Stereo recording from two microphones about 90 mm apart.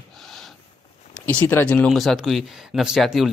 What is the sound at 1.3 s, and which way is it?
Speech, 20° left (ahead or behind).